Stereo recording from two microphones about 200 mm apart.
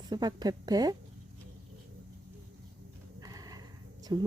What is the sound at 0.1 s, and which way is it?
Speech, 20° right (ahead or behind).